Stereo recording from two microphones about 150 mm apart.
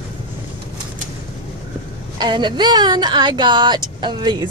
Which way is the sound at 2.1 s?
30° right (ahead or behind).